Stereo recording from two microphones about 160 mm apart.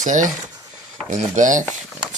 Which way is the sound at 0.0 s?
55° right (ahead or behind).